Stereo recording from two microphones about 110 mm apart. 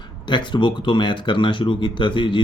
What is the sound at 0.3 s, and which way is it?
Speech, 45° left (ahead or behind).